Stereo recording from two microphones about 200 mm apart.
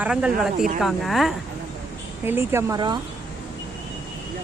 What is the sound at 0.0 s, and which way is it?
Speech, 5° right (ahead or behind).